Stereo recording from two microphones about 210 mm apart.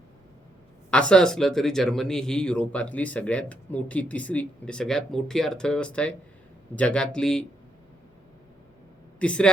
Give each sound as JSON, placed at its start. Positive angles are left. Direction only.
{"t": 0.9, "sound": "speech", "side_deg": 5}
{"t": 9.1, "sound": "speech", "side_deg": 5}